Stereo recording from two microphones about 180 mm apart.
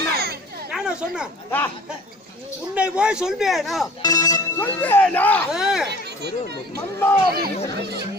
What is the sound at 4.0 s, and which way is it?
Speech, 20° left (ahead or behind).